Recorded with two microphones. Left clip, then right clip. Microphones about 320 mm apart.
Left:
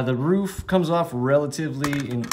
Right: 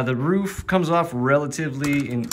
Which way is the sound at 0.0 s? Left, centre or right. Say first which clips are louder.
Even; centre.